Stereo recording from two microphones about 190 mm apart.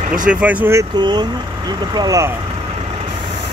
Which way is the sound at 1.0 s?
20° right (ahead or behind).